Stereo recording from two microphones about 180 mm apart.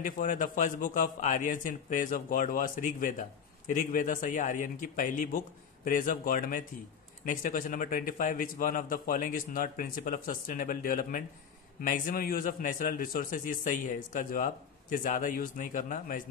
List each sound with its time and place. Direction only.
0.0 s a man's voice: 45° left (ahead or behind)